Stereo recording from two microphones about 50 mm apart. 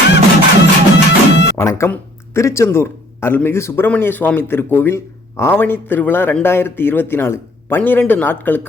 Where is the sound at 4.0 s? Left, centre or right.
Left.